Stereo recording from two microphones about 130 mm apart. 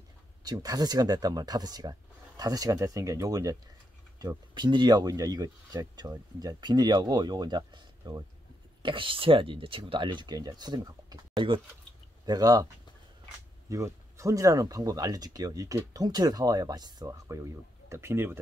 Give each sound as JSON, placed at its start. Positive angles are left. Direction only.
{"t": 0.4, "sound": "speech", "side_deg": -30}